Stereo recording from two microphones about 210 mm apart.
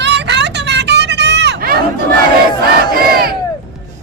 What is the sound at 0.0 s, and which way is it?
Hubbub, 55° right (ahead or behind).